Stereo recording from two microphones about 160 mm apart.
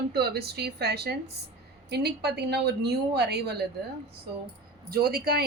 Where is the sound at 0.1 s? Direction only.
90° right.